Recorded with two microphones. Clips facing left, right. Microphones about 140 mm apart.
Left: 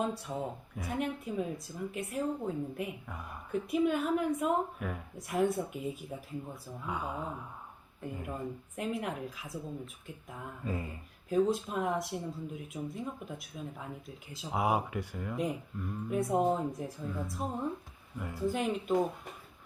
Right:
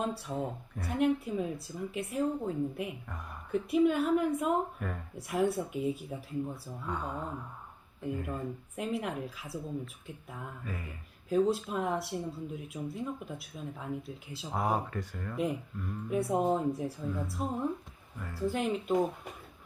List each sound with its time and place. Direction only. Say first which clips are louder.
0.0 s a woman's voice: even; centre (ahead or behind)
10.6 s speech: left 9 dB; 25° left (ahead or behind)
11.3 s a woman's voice: right 1 dB; centre (ahead or behind)
14.6 s a woman's voice: left 1 dB; 10° left (ahead or behind); by 17.4 s 5° right (ahead or behind)
18.2 s speech: left 1 dB; 15° left (ahead or behind)
18.5 s a woman's voice: right 2 dB; centre (ahead or behind)